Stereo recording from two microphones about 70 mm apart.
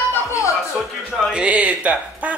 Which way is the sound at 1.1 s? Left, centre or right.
Centre.